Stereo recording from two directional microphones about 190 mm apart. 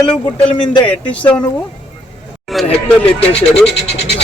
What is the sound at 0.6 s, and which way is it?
Speech, 25° left (ahead or behind).